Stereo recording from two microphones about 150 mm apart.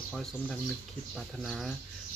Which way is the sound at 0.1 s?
Centre (ahead or behind).